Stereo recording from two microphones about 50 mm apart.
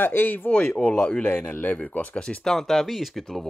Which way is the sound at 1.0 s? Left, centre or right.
Left.